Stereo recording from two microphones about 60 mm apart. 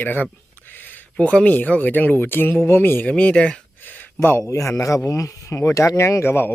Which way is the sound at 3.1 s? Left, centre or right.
Centre.